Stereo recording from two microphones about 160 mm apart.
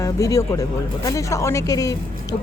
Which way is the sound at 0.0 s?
20° left (ahead or behind).